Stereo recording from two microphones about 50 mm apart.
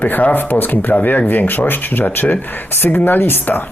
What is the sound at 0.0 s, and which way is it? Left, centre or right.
Speech, left.